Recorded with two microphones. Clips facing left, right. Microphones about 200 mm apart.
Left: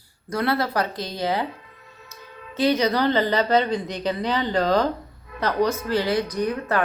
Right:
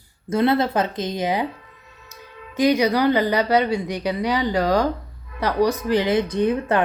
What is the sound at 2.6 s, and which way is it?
A woman's voice, 15° right (ahead or behind).